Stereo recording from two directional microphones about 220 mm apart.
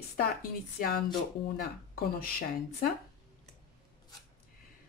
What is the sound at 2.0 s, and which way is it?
Speech, 40° left (ahead or behind).